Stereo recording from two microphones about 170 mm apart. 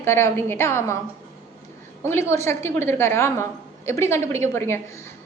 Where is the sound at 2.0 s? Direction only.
15° left (ahead or behind).